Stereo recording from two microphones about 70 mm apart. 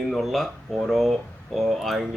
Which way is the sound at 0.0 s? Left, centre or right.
Centre.